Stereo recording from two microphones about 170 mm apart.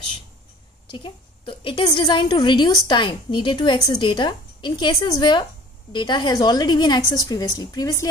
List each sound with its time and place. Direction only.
0.8 s a woman's voice: 30° left (ahead or behind)